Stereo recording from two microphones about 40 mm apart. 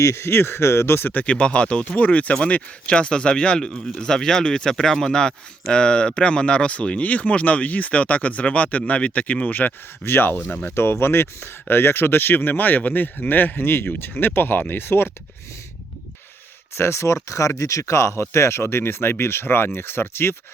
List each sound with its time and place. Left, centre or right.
0.2 s speech: left
1.2 s speech: left
2.0 s speech: left
10.0 s speech: left
10.8 s speech: left
16.7 s speech: left
18.1 s speech: left